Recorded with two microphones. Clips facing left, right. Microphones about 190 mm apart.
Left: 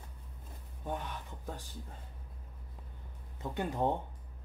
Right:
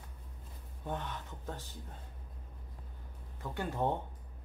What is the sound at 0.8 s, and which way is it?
Speech, 10° left (ahead or behind).